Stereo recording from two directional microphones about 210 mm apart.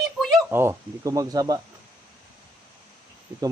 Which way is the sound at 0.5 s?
10° right (ahead or behind).